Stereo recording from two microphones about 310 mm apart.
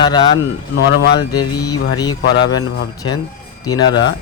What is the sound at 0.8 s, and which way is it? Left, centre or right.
Speech, left.